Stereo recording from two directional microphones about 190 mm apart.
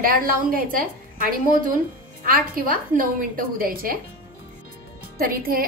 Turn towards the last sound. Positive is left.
turn(degrees=-50)  # may be behind; listen again after turning